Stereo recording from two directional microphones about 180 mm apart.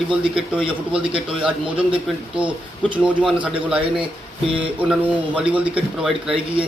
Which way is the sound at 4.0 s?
30° right (ahead or behind).